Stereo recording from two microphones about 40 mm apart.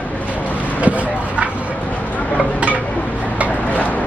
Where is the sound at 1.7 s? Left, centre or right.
Left.